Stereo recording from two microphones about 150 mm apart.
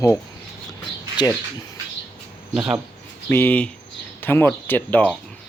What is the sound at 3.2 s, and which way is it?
Speech, 10° left (ahead or behind).